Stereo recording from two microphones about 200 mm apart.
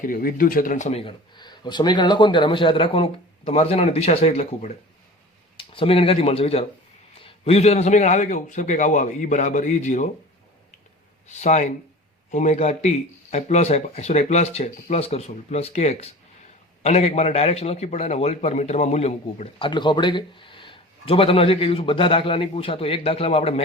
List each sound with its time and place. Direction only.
0.0 s a man's voice: 45° left (ahead or behind)
11.3 s a man's voice: 35° left (ahead or behind)